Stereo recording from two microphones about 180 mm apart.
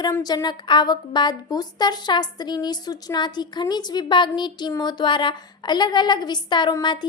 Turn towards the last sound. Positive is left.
turn(degrees=25)  # may be behind; listen again after turning